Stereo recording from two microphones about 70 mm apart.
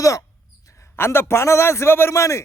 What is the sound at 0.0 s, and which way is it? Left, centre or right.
Speech, left.